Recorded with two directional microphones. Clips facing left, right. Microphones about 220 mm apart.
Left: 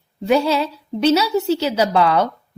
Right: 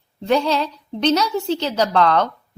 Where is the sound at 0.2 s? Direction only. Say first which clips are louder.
Left 2 dB; 5° left (ahead or behind).